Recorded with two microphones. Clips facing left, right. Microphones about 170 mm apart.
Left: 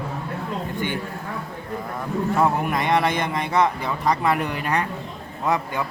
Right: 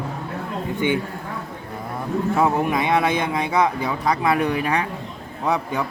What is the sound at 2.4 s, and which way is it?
Speech, 5° right (ahead or behind).